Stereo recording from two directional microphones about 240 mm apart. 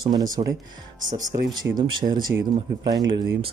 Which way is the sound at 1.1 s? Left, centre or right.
Right.